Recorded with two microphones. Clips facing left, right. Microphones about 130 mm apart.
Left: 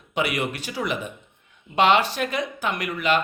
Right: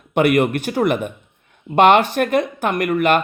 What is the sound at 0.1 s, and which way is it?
Speech, 55° right (ahead or behind).